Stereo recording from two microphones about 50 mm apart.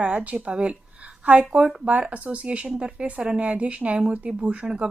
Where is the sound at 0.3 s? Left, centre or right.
Centre.